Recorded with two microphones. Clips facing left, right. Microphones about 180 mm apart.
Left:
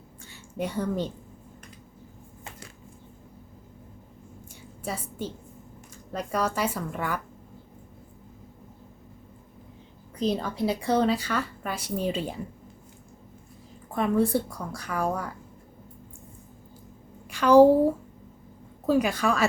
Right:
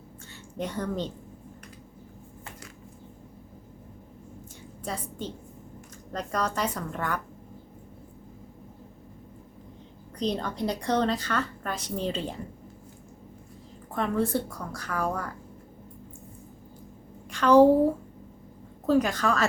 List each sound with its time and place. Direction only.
0.3 s a woman's voice: 10° left (ahead or behind)
4.8 s a woman's voice: 5° left (ahead or behind)
10.2 s a woman's voice: 5° left (ahead or behind)
13.9 s a woman's voice: 15° left (ahead or behind)
17.3 s a woman's voice: 10° left (ahead or behind)
18.9 s a woman's voice: 10° left (ahead or behind)